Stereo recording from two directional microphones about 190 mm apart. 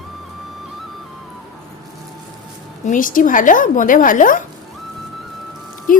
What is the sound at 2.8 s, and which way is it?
A woman's voice, 45° left (ahead or behind).